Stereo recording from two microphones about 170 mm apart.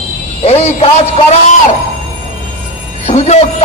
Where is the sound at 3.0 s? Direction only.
40° left (ahead or behind).